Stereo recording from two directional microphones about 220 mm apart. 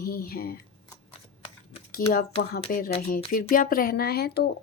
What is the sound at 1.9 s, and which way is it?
A woman's voice, 40° left (ahead or behind).